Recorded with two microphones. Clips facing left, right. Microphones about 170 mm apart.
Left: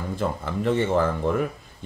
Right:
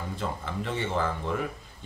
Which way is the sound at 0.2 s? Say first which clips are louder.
Left 8 dB; 55° left (ahead or behind).